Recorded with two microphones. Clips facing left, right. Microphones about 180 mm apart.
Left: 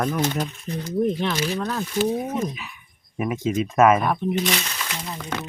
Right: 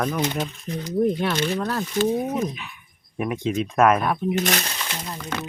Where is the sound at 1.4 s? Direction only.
Centre (ahead or behind).